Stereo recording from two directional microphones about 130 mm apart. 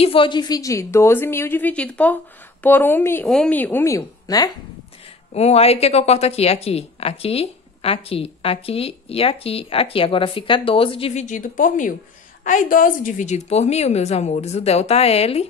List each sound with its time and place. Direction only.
0.0 s a woman's voice: 45° left (ahead or behind); by 4.5 s 25° left (ahead or behind)
5.3 s speech: 55° left (ahead or behind)
11.2 s a woman's voice: 80° left; by 15.4 s 50° left (ahead or behind)